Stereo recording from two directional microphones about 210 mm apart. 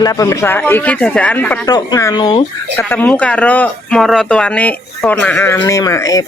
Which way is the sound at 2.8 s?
10° left (ahead or behind).